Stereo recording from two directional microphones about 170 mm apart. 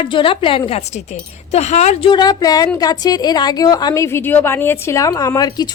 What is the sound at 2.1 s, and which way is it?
A woman's voice, 25° left (ahead or behind).